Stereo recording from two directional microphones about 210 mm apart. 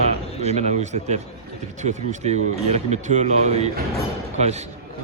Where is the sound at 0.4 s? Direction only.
30° right (ahead or behind).